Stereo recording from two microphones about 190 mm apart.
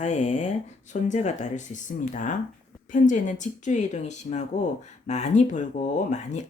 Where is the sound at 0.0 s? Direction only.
40° left (ahead or behind).